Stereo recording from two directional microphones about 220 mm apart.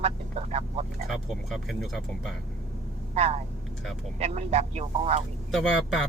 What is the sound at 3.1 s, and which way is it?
Speech, 30° right (ahead or behind).